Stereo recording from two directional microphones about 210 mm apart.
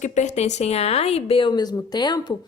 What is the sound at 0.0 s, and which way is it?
A woman's voice, 35° left (ahead or behind).